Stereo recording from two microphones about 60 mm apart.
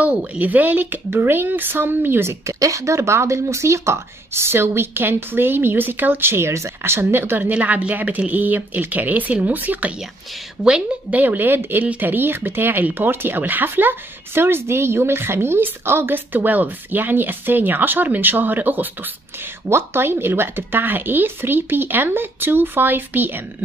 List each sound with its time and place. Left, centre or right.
0.0 s speech: right
2.4 s a woman's voice: right
7.5 s speech: right
11.1 s speech: right
19.7 s speech: right